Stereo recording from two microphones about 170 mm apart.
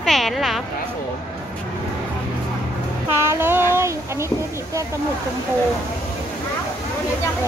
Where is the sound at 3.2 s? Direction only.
15° right (ahead or behind).